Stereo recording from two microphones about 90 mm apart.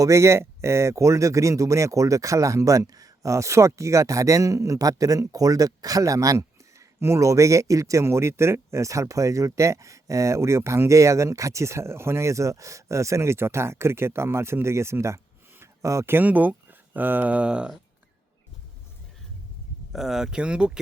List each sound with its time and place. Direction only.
0.0 s speech: 35° right (ahead or behind); by 17.7 s 10° right (ahead or behind)
19.9 s speech: 5° right (ahead or behind)